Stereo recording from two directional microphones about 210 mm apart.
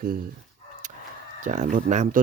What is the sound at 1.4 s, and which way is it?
Speech, 35° right (ahead or behind).